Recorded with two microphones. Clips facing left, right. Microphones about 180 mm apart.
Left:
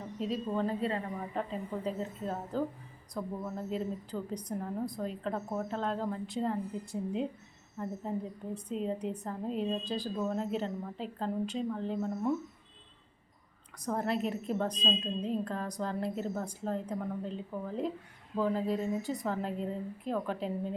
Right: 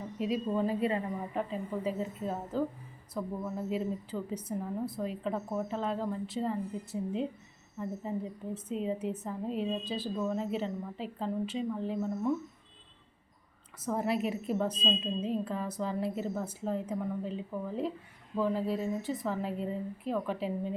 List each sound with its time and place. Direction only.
0.2 s a woman's voice: 10° right (ahead or behind)
13.7 s a woman's voice: 5° right (ahead or behind)